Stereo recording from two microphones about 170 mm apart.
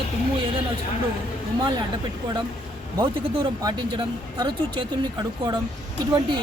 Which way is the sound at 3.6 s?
25° right (ahead or behind).